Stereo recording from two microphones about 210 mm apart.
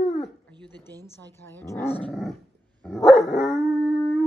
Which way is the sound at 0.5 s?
20° right (ahead or behind).